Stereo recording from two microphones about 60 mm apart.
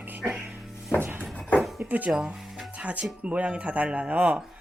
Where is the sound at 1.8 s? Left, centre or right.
Right.